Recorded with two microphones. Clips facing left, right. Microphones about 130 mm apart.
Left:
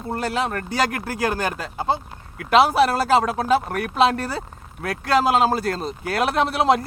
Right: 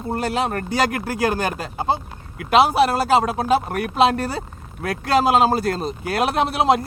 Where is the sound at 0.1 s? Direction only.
20° right (ahead or behind).